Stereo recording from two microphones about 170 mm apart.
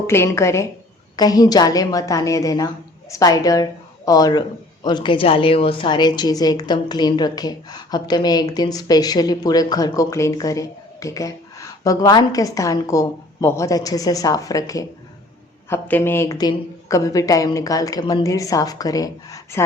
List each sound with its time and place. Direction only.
0.1 s a woman's voice: 15° left (ahead or behind)